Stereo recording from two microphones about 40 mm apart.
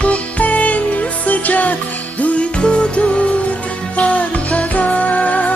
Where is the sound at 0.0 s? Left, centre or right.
Left.